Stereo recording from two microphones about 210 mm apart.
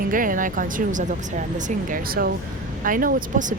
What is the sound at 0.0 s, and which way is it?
Speech, 40° right (ahead or behind).